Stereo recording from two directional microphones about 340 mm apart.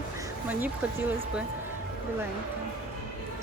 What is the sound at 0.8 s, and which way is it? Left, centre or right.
Speech, centre.